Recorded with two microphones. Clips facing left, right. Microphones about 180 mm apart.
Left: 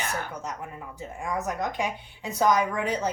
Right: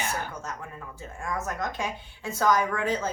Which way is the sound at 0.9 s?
15° left (ahead or behind).